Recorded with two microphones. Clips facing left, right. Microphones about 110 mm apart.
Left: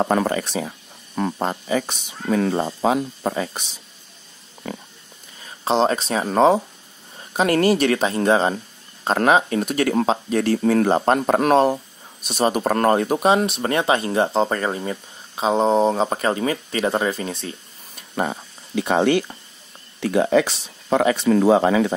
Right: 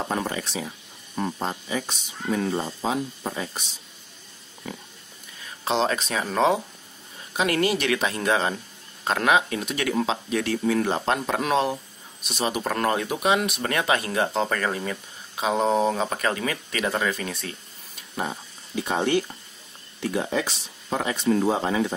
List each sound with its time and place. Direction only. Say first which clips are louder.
0.0 s speech: left 8 dB; 60° left (ahead or behind)
1.1 s speech: left 5 dB; 75° left (ahead or behind)
4.6 s speech: left 5 dB; 60° left (ahead or behind)
5.7 s speech: left 5 dB; 35° left (ahead or behind)
18.1 s speech: left 6 dB; 60° left (ahead or behind); by 21.9 s 85° left